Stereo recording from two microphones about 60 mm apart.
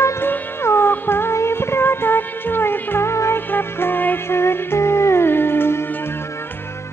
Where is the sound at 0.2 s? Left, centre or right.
Left.